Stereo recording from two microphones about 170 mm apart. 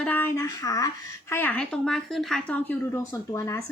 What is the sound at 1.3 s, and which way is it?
A woman's voice, 10° left (ahead or behind).